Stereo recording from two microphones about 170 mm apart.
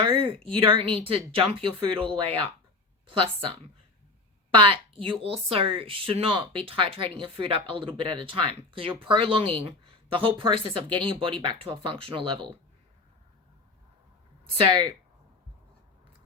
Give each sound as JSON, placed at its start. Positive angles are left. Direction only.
{"t": 0.0, "sound": "a sound", "side_deg": -30}
{"t": 0.5, "sound": "speech", "side_deg": -30}
{"t": 4.5, "sound": "speech", "side_deg": -30}
{"t": 14.7, "sound": "speech", "side_deg": -25}